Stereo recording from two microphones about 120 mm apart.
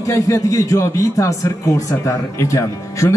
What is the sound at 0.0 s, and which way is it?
A man's voice, 25° left (ahead or behind).